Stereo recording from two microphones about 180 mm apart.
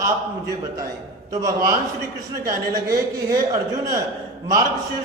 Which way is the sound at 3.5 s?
20° right (ahead or behind).